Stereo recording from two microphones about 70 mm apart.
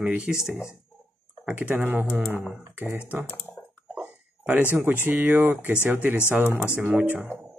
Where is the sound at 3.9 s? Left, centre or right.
Centre.